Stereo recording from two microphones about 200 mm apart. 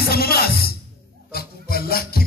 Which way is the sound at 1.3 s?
50° left (ahead or behind).